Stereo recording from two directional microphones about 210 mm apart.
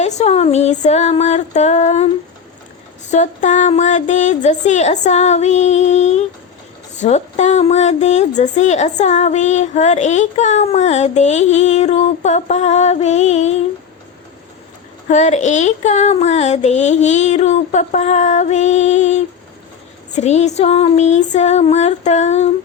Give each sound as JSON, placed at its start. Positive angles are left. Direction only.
{"t": 0.0, "sound": "a woman's voice", "side_deg": 30}
{"t": 3.1, "sound": "a woman's voice", "side_deg": 35}
{"t": 15.0, "sound": "a woman's voice", "side_deg": 35}